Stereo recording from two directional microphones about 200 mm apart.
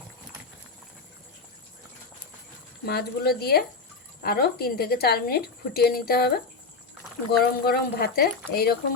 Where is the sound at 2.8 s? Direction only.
55° left (ahead or behind).